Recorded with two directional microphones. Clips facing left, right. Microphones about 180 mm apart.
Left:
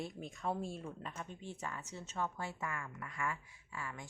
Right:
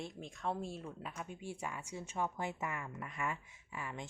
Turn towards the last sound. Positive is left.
turn(degrees=-20)  # may be behind; listen again after turning